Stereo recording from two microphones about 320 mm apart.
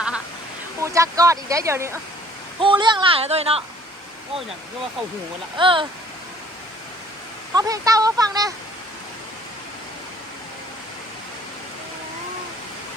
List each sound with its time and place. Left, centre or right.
0.8 s speech: centre
5.5 s speech: centre
7.5 s speech: centre